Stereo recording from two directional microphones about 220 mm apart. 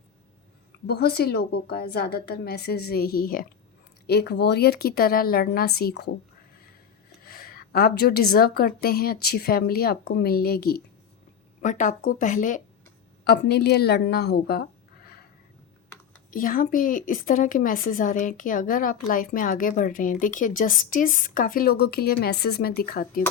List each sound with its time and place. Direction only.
0.9 s a woman's voice: 45° left (ahead or behind)
7.2 s a woman's voice: 40° left (ahead or behind)
13.2 s a woman's voice: 50° left (ahead or behind)
16.3 s a woman's voice: 40° left (ahead or behind)